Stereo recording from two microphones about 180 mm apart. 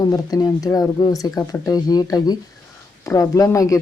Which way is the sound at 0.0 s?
20° left (ahead or behind).